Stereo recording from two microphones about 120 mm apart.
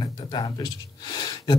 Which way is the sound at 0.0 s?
40° left (ahead or behind).